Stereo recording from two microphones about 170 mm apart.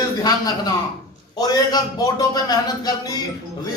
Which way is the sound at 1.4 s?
20° left (ahead or behind).